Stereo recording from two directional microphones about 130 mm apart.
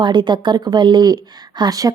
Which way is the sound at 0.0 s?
35° right (ahead or behind).